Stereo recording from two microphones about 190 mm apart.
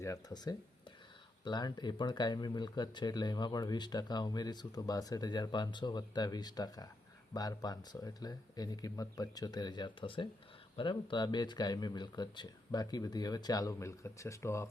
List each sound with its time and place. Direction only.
0.0 s speech: 15° left (ahead or behind)